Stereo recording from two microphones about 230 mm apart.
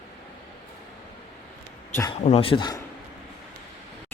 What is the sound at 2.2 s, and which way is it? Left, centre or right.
Speech, left.